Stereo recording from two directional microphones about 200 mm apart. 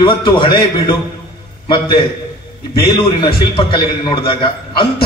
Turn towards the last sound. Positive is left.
turn(degrees=25)  # may be behind; listen again after turning